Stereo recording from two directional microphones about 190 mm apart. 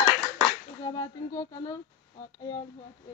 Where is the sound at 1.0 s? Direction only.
20° left (ahead or behind).